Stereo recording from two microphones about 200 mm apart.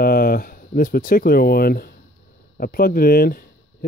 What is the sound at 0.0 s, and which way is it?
Speech, 45° left (ahead or behind).